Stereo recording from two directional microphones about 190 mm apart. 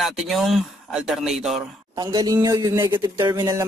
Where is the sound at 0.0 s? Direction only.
Centre (ahead or behind).